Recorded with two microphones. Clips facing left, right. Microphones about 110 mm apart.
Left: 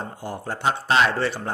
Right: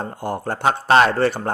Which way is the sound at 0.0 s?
50° right (ahead or behind).